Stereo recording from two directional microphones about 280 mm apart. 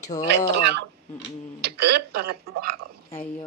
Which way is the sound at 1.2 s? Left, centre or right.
Right.